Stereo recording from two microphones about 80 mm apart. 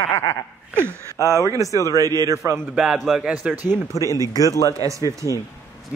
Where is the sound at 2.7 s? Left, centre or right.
Centre.